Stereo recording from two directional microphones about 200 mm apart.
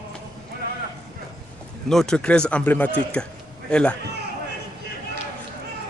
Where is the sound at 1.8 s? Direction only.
5° left (ahead or behind).